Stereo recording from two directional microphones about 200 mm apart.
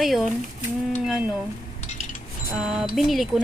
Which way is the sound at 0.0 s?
Centre (ahead or behind).